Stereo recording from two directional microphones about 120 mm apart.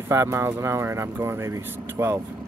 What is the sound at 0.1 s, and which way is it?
Speech, 20° right (ahead or behind).